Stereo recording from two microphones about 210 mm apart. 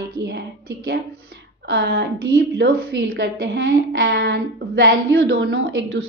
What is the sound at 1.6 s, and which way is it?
A woman's voice, 55° right (ahead or behind).